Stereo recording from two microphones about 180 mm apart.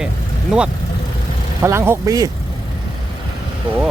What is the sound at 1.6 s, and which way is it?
Speech, 15° right (ahead or behind).